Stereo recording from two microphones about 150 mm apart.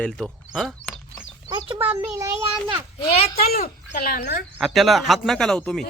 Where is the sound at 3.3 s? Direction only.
85° left.